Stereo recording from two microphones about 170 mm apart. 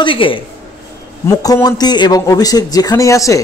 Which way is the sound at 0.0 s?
30° left (ahead or behind).